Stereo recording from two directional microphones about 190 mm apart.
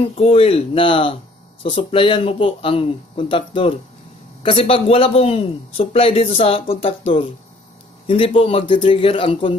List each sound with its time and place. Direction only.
0.0 s a man's voice: 30° left (ahead or behind)